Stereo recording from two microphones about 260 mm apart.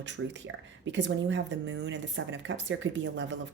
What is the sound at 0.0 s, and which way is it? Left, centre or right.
Speech, right.